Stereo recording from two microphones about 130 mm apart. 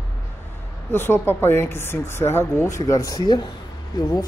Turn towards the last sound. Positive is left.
turn(degrees=30)  # may be behind; listen again after turning